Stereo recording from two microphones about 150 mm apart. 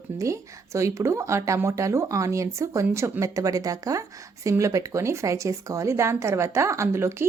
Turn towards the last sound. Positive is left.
turn(degrees=-15)  # may be behind; listen again after turning